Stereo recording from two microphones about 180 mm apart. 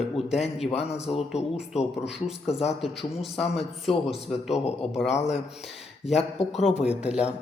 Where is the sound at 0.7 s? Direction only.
35° left (ahead or behind).